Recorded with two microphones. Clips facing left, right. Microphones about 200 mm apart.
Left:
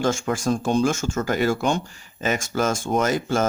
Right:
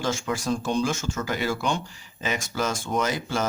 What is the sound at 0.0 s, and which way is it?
Speech, 50° left (ahead or behind).